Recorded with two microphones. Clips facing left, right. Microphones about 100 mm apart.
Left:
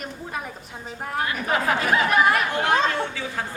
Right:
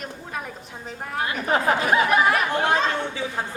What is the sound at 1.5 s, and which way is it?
Speech, 25° right (ahead or behind).